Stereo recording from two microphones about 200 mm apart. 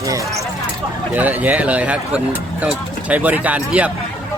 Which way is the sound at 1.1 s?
10° right (ahead or behind).